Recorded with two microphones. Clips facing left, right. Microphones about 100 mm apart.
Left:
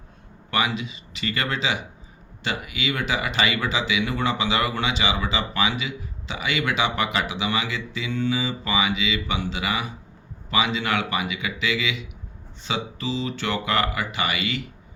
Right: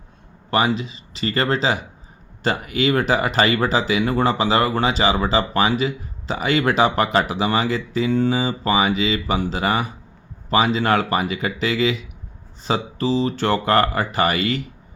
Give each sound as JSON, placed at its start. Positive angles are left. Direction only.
{"t": 0.5, "sound": "speech", "side_deg": -35}